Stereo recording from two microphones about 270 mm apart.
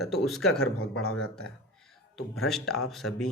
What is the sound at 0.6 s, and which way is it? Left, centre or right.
Speech, left.